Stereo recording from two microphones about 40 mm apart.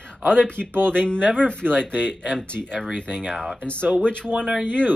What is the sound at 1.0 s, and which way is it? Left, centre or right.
Speech, left.